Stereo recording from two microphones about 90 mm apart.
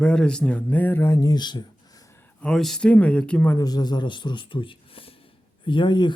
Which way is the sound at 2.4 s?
5° left (ahead or behind).